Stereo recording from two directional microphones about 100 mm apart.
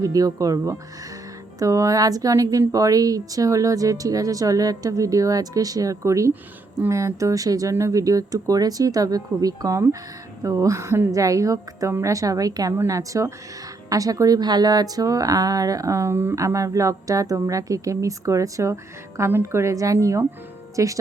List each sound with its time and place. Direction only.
0.0 s a woman's voice: 35° right (ahead or behind)